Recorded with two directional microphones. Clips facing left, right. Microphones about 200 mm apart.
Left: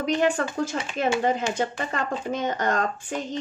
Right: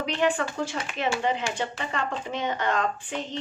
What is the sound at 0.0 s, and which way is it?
Speech, 40° left (ahead or behind).